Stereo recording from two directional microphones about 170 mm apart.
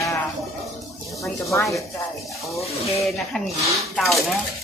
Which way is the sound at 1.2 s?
15° left (ahead or behind).